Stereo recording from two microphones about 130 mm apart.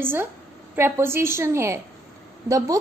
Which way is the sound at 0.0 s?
15° right (ahead or behind).